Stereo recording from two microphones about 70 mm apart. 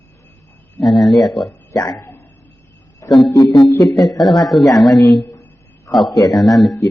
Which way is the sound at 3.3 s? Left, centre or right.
Left.